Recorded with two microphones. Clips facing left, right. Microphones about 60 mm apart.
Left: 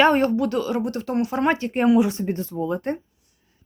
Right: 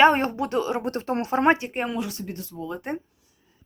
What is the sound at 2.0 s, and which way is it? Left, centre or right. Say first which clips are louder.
Speech: left 10 dB; left.